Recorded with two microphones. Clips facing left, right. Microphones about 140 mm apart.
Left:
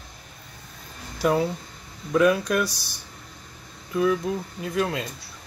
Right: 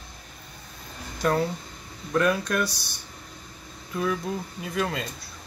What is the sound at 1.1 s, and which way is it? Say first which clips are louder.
Speech: left 2 dB; 5° left (ahead or behind).